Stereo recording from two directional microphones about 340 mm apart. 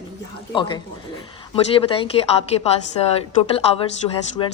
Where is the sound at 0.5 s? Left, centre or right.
Centre.